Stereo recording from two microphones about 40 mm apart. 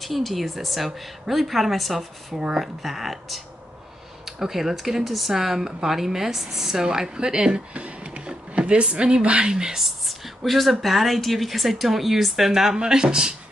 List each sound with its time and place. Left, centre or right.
0.0 s speech: centre
2.3 s speech: centre
2.6 s a woman's voice: centre; by 7.6 s right
7.7 s speech: right
9.8 s speech: centre